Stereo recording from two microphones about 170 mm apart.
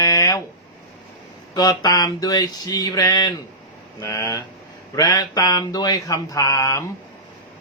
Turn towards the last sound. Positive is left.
turn(degrees=20)  # may be behind; listen again after turning